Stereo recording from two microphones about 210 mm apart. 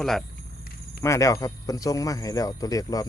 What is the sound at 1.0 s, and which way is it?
Speech, 15° left (ahead or behind).